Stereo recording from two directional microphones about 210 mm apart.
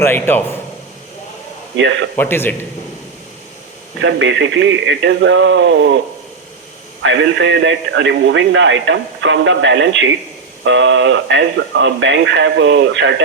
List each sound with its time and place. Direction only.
0.0 s a man's voice: 10° left (ahead or behind)
1.7 s a man's voice: 60° right (ahead or behind)
2.1 s a man's voice: 10° left (ahead or behind)
4.0 s a man's voice: 60° right (ahead or behind)
7.0 s a man's voice: 60° right (ahead or behind)